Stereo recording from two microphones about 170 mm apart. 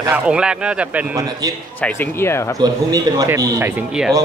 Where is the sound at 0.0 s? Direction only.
10° right (ahead or behind).